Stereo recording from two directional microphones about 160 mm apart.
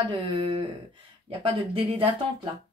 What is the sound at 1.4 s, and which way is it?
Speech, 35° right (ahead or behind).